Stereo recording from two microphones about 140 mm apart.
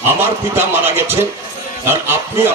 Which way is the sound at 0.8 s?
15° right (ahead or behind).